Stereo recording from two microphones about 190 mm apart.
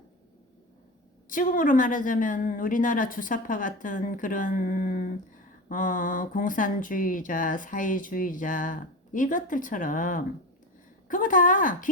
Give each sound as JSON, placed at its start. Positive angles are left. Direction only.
{"t": 1.3, "sound": "speech", "side_deg": 45}